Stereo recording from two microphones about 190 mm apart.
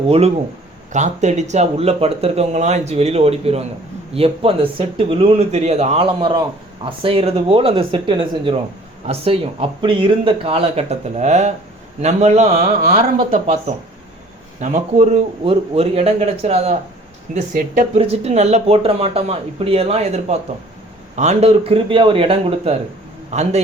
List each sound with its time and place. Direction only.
0.1 s speech: 35° right (ahead or behind)
12.8 s speech: 50° right (ahead or behind)